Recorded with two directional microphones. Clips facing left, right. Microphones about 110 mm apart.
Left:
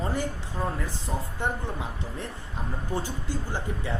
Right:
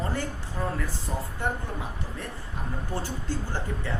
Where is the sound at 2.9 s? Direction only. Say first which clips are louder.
Left 1 dB; 15° left (ahead or behind).